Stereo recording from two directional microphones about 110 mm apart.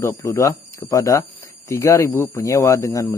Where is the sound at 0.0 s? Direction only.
30° left (ahead or behind).